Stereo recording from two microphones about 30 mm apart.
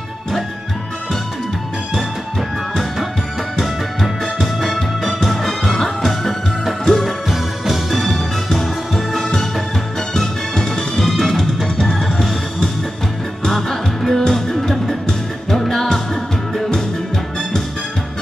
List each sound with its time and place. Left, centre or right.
3.5 s music: centre
7.2 s music: centre
13.5 s music: centre
14.2 s music: left
14.6 s music: centre